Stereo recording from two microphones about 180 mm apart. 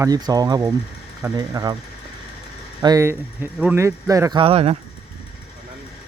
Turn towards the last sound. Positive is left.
turn(degrees=-35)  # may be behind; listen again after turning